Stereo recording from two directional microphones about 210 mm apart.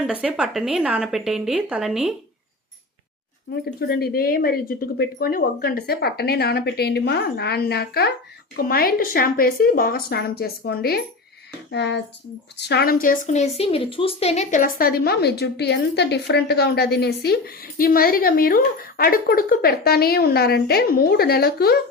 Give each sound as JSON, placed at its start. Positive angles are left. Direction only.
{"t": 0.0, "sound": "a woman's voice", "side_deg": -5}
{"t": 3.5, "sound": "a woman's voice", "side_deg": 50}
{"t": 11.7, "sound": "a sound", "side_deg": 55}
{"t": 12.5, "sound": "a woman's voice", "side_deg": 55}